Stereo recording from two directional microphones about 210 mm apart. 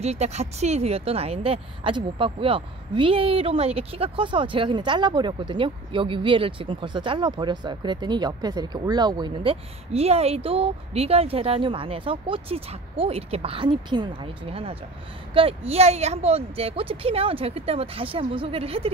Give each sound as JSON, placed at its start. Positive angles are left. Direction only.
{"t": 0.0, "sound": "a woman's voice", "side_deg": -30}